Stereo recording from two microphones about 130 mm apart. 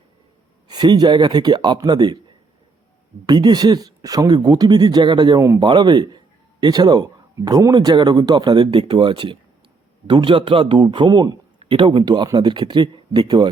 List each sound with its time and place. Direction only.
0.7 s a man's voice: 35° right (ahead or behind)
3.2 s a man's voice: 35° right (ahead or behind)